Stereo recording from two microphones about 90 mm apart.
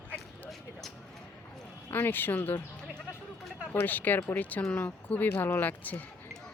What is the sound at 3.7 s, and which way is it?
A woman's voice, 20° left (ahead or behind).